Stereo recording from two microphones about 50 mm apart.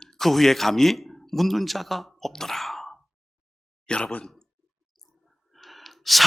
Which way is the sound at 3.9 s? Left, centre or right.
Centre.